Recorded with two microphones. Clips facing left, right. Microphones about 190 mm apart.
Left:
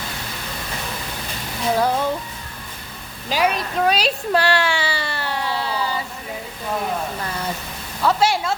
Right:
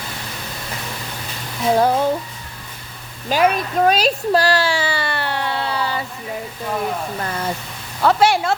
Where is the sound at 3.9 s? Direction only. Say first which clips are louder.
Right 3 dB; 45° right (ahead or behind); by 5.7 s 60° right (ahead or behind).